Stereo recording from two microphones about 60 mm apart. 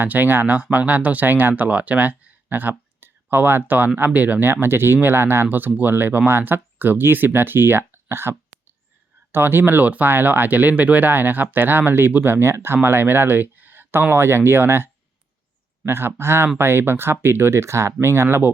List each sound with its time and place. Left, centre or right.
0.0 s speech: right
15.9 s speech: right